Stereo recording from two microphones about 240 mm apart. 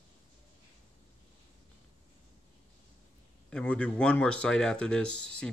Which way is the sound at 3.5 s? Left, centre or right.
Centre.